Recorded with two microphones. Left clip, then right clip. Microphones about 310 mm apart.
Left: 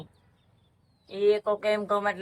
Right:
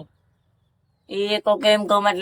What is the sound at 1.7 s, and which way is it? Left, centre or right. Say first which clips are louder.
Speech: right 8 dB; right.